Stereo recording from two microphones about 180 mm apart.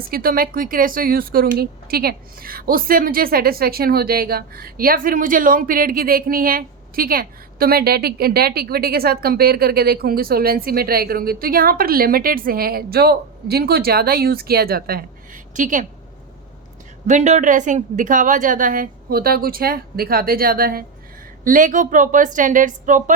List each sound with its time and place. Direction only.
0.1 s a woman's voice: 55° right (ahead or behind)
17.1 s a woman's voice: 40° right (ahead or behind)